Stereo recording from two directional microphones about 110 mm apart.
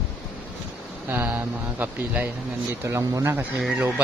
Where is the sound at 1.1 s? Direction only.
20° right (ahead or behind).